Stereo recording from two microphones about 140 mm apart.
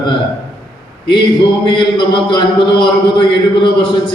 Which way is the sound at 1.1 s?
35° left (ahead or behind).